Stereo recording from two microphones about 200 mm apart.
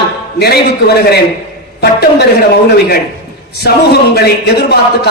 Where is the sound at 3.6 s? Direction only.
55° left (ahead or behind).